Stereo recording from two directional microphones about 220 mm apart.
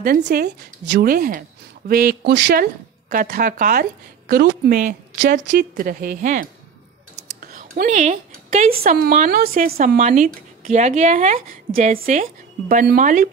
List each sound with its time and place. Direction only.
0.0 s a woman's voice: 40° right (ahead or behind)